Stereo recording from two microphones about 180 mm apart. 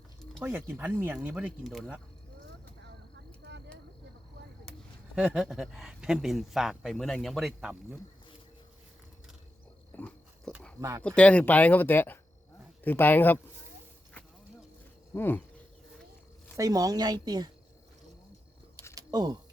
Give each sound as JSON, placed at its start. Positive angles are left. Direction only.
{"t": 0.4, "sound": "speech", "side_deg": -15}
{"t": 5.1, "sound": "speech", "side_deg": -5}
{"t": 9.9, "sound": "biting", "side_deg": 10}
{"t": 10.8, "sound": "speech", "side_deg": -20}
{"t": 11.0, "sound": "speech", "side_deg": 5}
{"t": 15.1, "sound": "speech", "side_deg": 10}
{"t": 16.6, "sound": "a woman's voice", "side_deg": -20}
{"t": 18.9, "sound": "a sound", "side_deg": -20}